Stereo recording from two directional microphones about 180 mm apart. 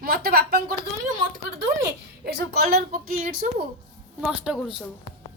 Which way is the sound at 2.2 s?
60° right (ahead or behind).